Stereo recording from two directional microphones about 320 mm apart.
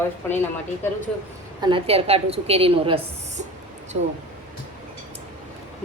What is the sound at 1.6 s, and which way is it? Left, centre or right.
A woman's voice, centre.